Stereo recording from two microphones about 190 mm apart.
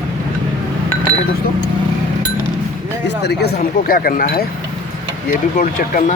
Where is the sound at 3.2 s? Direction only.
60° left (ahead or behind).